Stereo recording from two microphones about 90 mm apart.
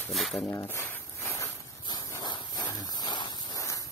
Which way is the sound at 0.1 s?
Centre (ahead or behind).